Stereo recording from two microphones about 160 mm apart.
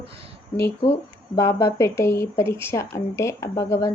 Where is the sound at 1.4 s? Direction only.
20° left (ahead or behind).